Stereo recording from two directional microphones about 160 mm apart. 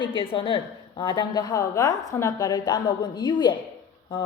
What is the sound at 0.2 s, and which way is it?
A woman's voice, 35° left (ahead or behind).